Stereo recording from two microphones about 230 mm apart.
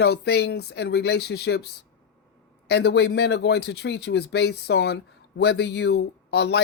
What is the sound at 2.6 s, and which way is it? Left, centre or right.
Speech, left.